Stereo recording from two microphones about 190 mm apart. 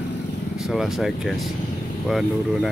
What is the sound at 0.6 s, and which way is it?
Speech, centre (ahead or behind).